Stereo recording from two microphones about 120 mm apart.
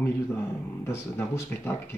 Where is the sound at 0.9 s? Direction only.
20° left (ahead or behind).